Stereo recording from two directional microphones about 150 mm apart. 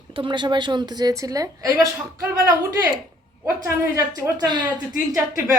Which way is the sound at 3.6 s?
20° right (ahead or behind).